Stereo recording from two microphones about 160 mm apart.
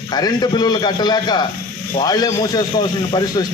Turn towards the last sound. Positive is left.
turn(degrees=25)  # may be behind; listen again after turning